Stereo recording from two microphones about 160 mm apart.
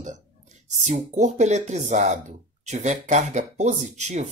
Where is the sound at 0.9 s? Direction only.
45° right (ahead or behind).